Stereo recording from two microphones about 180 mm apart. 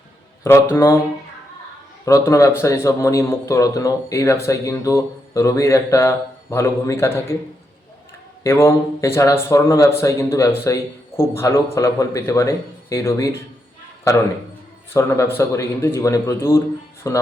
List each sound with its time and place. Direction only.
0.5 s speech: 15° left (ahead or behind)
2.0 s speech: 15° left (ahead or behind)
8.4 s speech: 15° left (ahead or behind)